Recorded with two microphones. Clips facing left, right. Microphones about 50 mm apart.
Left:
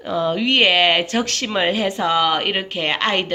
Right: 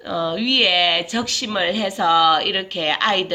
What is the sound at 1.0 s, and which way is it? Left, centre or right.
Speech, left.